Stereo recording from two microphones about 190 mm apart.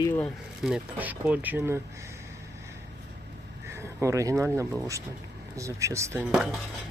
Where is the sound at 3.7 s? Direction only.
15° right (ahead or behind).